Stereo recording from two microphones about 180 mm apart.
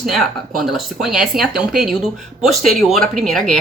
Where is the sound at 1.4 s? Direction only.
60° right (ahead or behind).